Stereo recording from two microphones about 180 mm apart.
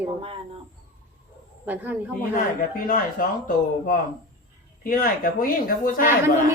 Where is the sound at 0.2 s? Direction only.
30° right (ahead or behind).